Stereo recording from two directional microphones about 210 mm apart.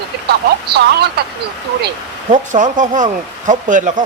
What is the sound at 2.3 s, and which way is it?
Speech, 35° right (ahead or behind).